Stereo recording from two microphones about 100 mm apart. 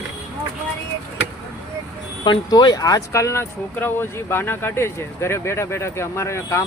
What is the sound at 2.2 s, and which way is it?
Speech, 45° left (ahead or behind).